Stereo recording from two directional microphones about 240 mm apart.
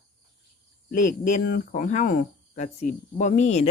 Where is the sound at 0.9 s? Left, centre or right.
Left.